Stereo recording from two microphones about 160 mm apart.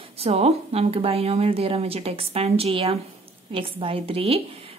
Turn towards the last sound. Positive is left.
turn(degrees=-35)  # may be behind; listen again after turning